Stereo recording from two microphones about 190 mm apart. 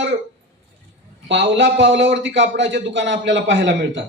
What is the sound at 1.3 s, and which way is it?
A man's voice, 70° right (ahead or behind).